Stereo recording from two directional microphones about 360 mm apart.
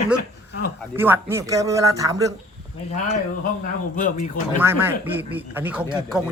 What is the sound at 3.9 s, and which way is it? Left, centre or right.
Speech, left.